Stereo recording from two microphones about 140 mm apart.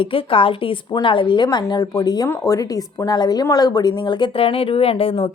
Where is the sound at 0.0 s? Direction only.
40° left (ahead or behind).